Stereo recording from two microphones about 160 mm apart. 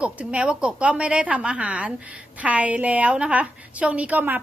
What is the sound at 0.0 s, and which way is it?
A woman's voice, 10° right (ahead or behind).